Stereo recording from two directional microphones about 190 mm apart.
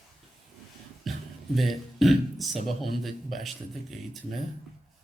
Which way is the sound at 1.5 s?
Centre (ahead or behind).